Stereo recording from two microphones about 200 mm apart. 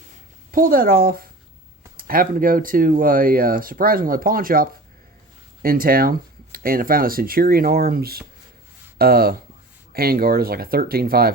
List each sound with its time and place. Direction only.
0.5 s speech: 45° right (ahead or behind)